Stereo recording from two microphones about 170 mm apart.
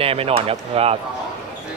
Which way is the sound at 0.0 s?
35° right (ahead or behind).